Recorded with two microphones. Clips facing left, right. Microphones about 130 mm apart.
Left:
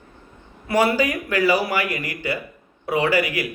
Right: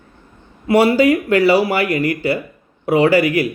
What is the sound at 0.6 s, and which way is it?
A man's voice, 25° right (ahead or behind).